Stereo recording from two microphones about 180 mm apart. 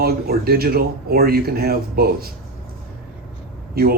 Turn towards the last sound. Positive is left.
turn(degrees=-55)  # may be behind; listen again after turning